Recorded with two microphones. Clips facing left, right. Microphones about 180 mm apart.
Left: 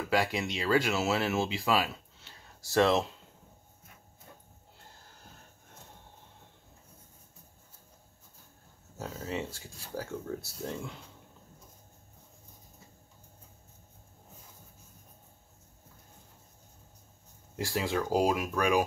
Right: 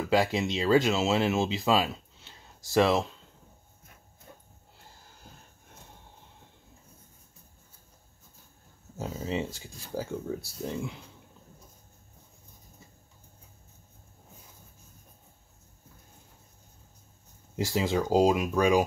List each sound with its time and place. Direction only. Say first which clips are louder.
0.1 s speech: right 4 dB; 25° right (ahead or behind)
8.9 s speech: right 4 dB; 20° right (ahead or behind)
17.6 s speech: right 3 dB; 20° right (ahead or behind)